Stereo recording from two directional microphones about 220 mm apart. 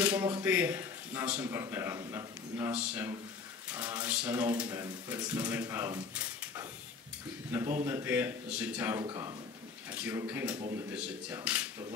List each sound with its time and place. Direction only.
0.0 s speech: 10° right (ahead or behind)
7.8 s speech: 10° right (ahead or behind)
9.8 s speech: 5° right (ahead or behind)